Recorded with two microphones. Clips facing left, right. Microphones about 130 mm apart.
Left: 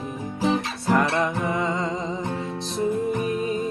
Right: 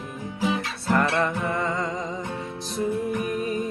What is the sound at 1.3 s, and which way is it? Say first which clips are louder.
Music: left 2 dB; 15° left (ahead or behind).